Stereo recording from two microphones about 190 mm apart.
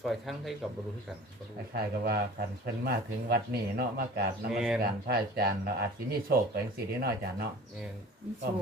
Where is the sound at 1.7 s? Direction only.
55° right (ahead or behind).